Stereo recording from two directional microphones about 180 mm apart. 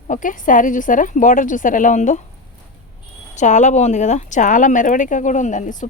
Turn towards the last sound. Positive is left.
turn(degrees=40)  # may be behind; listen again after turning